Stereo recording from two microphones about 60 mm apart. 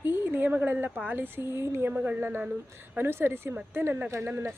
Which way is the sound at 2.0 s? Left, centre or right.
Right.